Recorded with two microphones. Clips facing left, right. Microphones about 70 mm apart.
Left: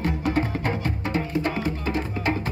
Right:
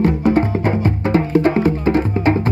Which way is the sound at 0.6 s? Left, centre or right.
Right.